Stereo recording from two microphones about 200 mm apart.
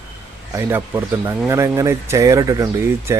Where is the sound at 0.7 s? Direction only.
10° right (ahead or behind).